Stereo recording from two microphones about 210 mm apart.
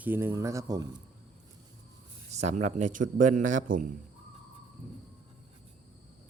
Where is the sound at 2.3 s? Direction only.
30° right (ahead or behind).